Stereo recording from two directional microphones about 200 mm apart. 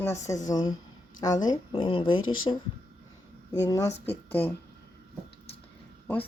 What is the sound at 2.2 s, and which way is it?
Speech, 90° left.